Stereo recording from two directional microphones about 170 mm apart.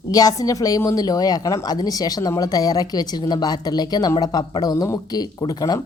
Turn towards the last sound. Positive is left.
turn(degrees=20)  # may be behind; listen again after turning